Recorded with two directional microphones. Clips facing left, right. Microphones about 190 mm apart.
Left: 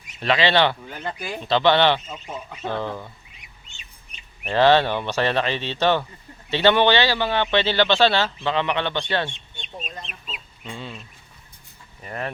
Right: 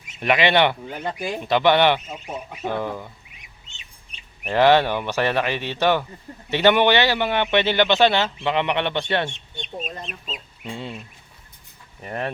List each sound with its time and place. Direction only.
0.2 s speech: 15° right (ahead or behind)
4.4 s speech: 15° right (ahead or behind)
9.6 s speech: 45° right (ahead or behind)
10.7 s speech: 25° right (ahead or behind)
12.0 s speech: 25° right (ahead or behind)